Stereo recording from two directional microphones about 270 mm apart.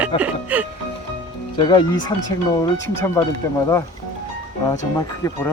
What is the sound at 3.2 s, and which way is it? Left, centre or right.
Speech, centre.